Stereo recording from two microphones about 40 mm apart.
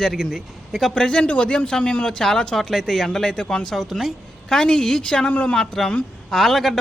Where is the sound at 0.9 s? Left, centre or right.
Left.